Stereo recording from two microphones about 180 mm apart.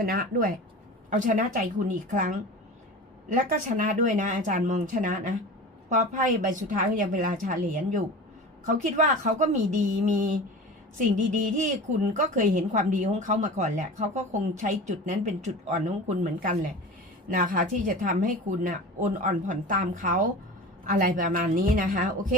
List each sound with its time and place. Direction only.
0.0 s a woman's voice: 55° right (ahead or behind)